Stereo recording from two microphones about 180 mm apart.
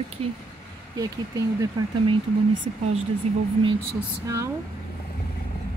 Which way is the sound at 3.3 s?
35° right (ahead or behind).